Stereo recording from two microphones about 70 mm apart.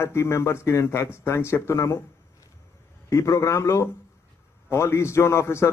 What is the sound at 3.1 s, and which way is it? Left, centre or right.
A man's voice, left.